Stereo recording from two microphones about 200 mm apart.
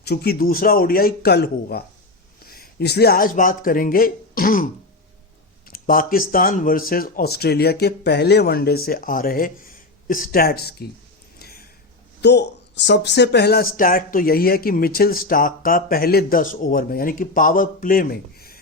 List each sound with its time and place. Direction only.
0.0 s speech: 55° left (ahead or behind)
11.3 s a sound: 50° left (ahead or behind)
12.2 s speech: 60° left (ahead or behind)